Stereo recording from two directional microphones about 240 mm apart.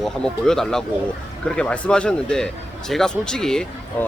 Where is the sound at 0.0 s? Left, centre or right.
Centre.